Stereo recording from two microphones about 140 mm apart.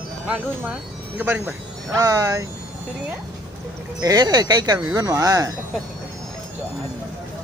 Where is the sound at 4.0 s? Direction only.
25° right (ahead or behind).